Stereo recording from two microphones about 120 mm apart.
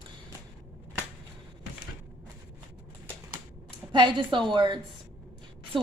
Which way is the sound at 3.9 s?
45° right (ahead or behind).